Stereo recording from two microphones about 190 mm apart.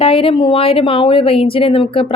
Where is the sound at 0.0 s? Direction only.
30° left (ahead or behind).